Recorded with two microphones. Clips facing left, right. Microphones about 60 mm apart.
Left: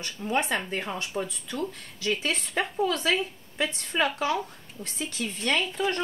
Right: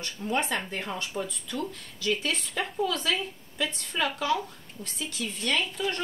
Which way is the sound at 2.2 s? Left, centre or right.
Left.